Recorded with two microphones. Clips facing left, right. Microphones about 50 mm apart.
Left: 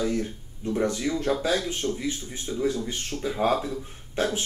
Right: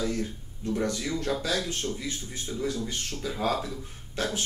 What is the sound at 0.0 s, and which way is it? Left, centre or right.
Speech, left.